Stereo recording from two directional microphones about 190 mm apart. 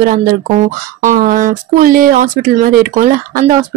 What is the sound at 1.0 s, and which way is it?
A woman's voice, 45° right (ahead or behind).